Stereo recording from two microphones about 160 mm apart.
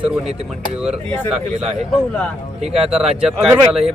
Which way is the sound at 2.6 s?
5° right (ahead or behind).